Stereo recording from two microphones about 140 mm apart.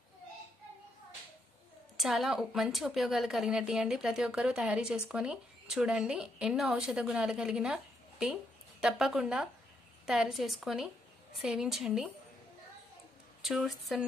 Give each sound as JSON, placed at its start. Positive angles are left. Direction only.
{"t": 2.0, "sound": "a woman's voice", "side_deg": 0}
{"t": 13.4, "sound": "a woman's voice", "side_deg": 0}